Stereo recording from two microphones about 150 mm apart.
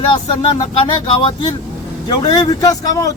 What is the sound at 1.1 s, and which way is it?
A man's voice, 30° left (ahead or behind).